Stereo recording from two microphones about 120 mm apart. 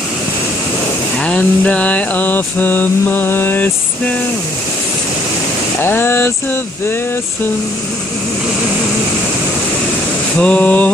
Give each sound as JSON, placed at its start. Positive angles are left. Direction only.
{"t": 1.2, "sound": "mantra", "side_deg": 10}
{"t": 5.8, "sound": "speech", "side_deg": 20}
{"t": 10.4, "sound": "mantra", "side_deg": 10}